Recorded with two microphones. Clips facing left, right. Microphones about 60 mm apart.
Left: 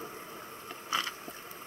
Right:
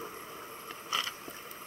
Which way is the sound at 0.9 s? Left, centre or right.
Left.